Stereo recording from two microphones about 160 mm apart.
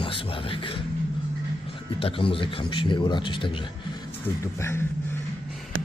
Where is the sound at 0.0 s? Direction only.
35° left (ahead or behind).